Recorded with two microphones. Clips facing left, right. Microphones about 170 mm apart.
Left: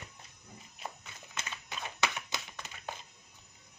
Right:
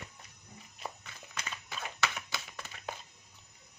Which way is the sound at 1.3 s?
20° left (ahead or behind).